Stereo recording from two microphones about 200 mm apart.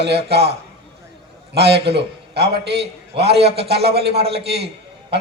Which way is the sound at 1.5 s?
55° right (ahead or behind).